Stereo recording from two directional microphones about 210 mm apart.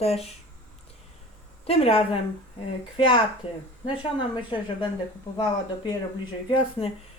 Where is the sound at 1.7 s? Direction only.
25° left (ahead or behind).